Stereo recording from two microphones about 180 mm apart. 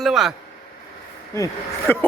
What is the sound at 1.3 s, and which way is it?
Speech, 15° left (ahead or behind).